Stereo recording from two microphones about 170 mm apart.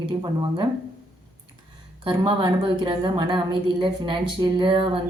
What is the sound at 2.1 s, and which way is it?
A woman's voice, 30° right (ahead or behind).